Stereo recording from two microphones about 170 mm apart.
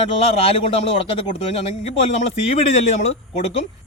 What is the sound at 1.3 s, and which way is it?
Speech, 35° left (ahead or behind).